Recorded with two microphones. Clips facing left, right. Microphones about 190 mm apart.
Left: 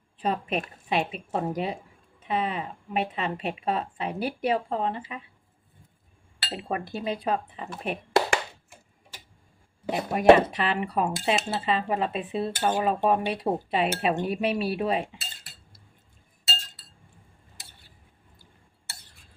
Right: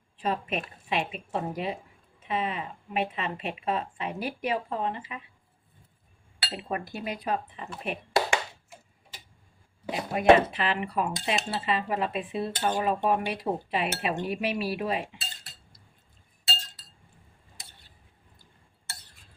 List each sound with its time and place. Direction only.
0.2 s speech: 35° left (ahead or behind)
6.5 s speech: 30° left (ahead or behind)
9.9 s speech: 45° left (ahead or behind)
12.5 s speech: 50° left (ahead or behind)
12.8 s speech: 35° left (ahead or behind)